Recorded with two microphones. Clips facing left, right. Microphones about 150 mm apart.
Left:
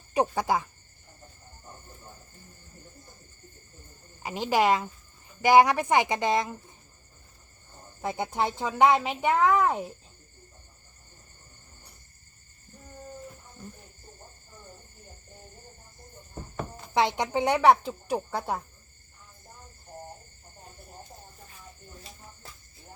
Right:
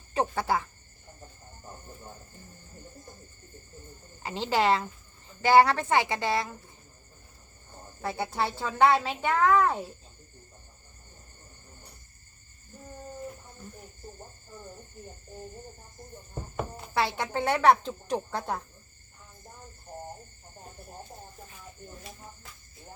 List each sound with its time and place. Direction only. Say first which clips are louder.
0.1 s speech: left 2 dB; 15° left (ahead or behind)
4.2 s speech: left 2 dB; 15° left (ahead or behind)
8.0 s speech: left 2 dB; 15° left (ahead or behind)
16.3 s a sound: right 2 dB; 10° right (ahead or behind)
16.9 s speech: left 4 dB; 20° left (ahead or behind)